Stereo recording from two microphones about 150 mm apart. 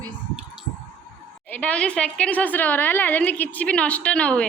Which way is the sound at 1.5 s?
10° left (ahead or behind).